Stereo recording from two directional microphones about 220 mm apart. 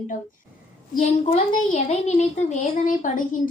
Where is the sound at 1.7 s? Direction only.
30° left (ahead or behind).